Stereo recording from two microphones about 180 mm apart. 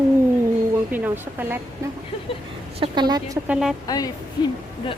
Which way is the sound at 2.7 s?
25° right (ahead or behind).